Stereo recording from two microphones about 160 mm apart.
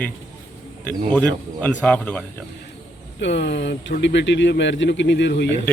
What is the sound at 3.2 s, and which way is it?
Speech, 90° left.